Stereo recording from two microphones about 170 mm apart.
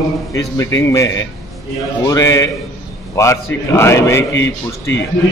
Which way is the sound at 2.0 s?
20° left (ahead or behind).